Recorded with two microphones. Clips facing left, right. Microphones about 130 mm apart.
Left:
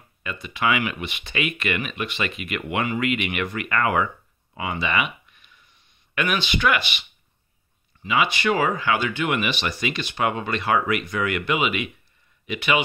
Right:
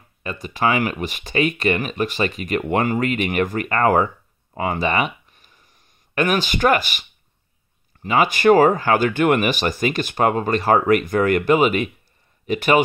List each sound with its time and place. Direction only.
0.2 s speech: 35° right (ahead or behind)
4.6 s a sound: 45° right (ahead or behind)
8.0 s speech: 45° right (ahead or behind)